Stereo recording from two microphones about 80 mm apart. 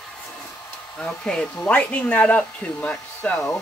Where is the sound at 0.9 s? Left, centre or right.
Centre.